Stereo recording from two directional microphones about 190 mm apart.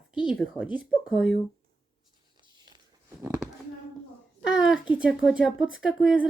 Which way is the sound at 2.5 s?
20° right (ahead or behind).